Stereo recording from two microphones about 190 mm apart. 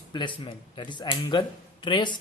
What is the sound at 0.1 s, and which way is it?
A man's voice, 25° left (ahead or behind).